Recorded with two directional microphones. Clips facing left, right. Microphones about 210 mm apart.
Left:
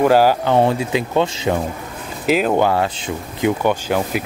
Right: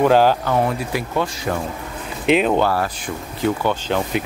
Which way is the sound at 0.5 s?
25° left (ahead or behind).